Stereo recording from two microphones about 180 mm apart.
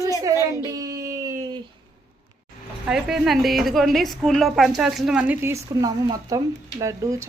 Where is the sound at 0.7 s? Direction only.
20° right (ahead or behind).